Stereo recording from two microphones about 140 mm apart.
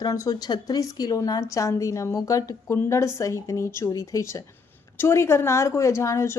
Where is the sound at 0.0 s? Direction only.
25° left (ahead or behind).